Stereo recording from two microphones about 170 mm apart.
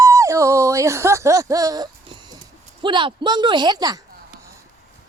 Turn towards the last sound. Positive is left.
turn(degrees=-25)  # may be behind; listen again after turning